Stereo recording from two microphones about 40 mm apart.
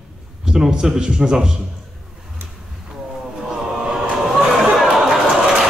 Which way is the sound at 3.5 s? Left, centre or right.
Right.